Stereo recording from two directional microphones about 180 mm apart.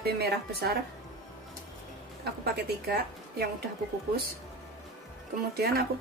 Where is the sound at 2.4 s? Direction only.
65° right (ahead or behind).